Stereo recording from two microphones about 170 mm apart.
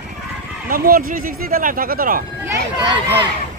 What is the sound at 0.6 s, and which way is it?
Speech, 55° right (ahead or behind).